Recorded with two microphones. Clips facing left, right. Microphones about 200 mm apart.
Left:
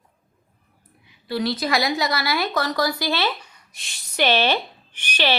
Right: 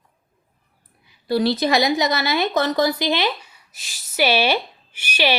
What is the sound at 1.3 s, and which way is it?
Speech, 35° right (ahead or behind).